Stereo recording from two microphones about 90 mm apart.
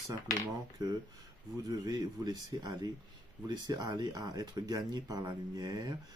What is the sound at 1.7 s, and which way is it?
Speech, 50° right (ahead or behind).